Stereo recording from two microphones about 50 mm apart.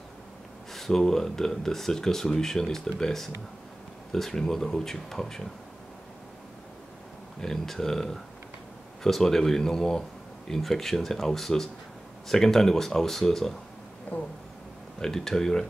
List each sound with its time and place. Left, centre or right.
0.7 s speech: centre
7.3 s speech: centre
15.0 s speech: centre